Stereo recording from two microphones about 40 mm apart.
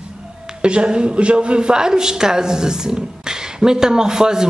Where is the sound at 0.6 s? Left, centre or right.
Right.